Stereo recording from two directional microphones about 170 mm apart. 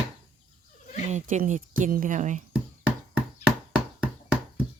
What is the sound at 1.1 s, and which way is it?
Speech, 45° right (ahead or behind).